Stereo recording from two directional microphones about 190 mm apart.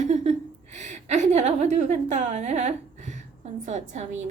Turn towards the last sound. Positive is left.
turn(degrees=-40)  # may be behind; listen again after turning